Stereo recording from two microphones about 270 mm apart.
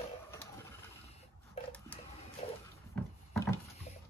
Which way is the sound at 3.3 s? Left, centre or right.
Centre.